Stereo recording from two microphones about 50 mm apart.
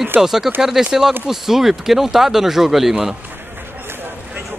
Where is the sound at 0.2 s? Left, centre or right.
Centre.